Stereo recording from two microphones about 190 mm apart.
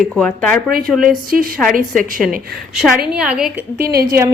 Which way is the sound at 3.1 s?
5° right (ahead or behind).